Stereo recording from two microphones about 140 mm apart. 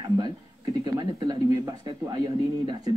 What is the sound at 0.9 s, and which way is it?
Speech, 25° right (ahead or behind).